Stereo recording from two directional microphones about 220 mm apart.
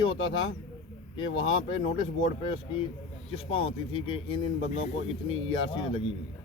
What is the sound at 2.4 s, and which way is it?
Speech, 25° left (ahead or behind).